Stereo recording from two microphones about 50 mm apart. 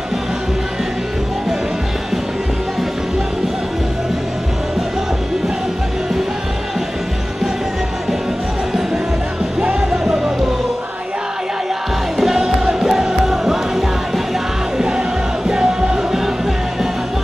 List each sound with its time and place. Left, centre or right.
9.6 s music: centre
12.2 s music: centre